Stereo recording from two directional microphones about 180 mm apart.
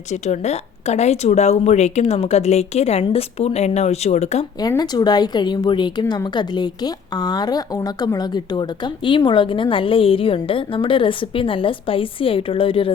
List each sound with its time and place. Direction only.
0.1 s a woman's voice: 40° left (ahead or behind)
4.6 s a woman's voice: 20° left (ahead or behind)